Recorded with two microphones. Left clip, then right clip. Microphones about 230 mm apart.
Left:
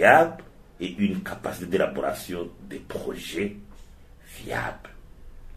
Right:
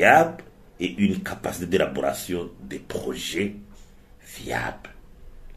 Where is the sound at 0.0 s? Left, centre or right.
Right.